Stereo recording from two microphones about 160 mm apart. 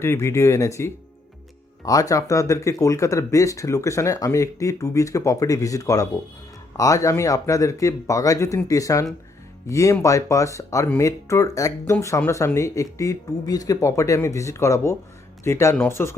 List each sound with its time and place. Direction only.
0.0 s speech: 15° left (ahead or behind)